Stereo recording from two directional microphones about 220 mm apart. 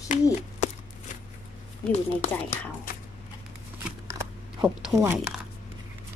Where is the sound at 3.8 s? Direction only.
15° right (ahead or behind).